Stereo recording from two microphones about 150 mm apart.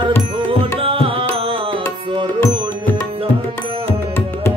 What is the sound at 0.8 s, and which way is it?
Music, 40° right (ahead or behind).